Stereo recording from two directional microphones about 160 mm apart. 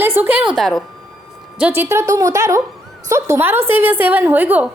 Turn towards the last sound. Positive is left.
turn(degrees=-10)  # may be behind; listen again after turning